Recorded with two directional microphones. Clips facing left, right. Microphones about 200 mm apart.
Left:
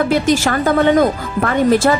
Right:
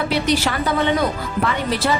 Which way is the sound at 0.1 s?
45° left (ahead or behind).